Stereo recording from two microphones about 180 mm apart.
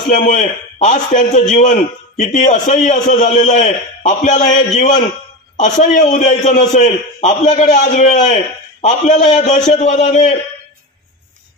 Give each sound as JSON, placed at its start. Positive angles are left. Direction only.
{"t": 0.1, "sound": "a man's voice", "side_deg": 45}